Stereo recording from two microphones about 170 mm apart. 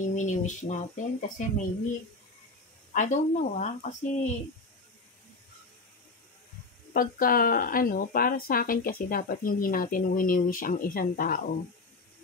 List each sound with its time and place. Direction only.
0.1 s speech: 45° left (ahead or behind)
2.9 s speech: 45° left (ahead or behind)
6.9 s speech: 55° left (ahead or behind)